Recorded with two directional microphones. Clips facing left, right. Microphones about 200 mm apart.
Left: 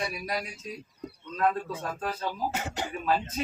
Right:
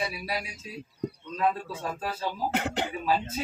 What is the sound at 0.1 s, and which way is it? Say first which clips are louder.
Speech: left 1 dB; 5° right (ahead or behind).